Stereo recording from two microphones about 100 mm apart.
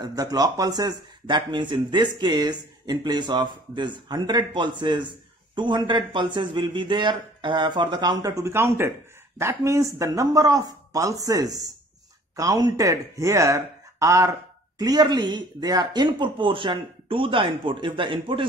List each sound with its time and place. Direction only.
0.0 s speech: 40° right (ahead or behind)
8.3 s speech: 30° right (ahead or behind)
14.8 s speech: 45° right (ahead or behind)